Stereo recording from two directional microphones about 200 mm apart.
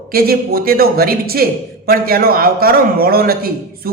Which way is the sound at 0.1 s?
50° right (ahead or behind).